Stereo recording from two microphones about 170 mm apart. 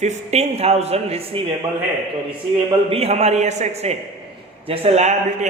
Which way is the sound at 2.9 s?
40° right (ahead or behind).